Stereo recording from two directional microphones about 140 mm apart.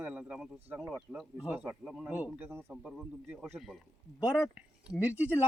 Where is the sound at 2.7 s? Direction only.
5° right (ahead or behind).